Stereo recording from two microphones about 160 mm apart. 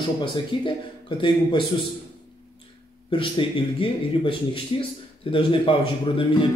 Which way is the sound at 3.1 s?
35° left (ahead or behind).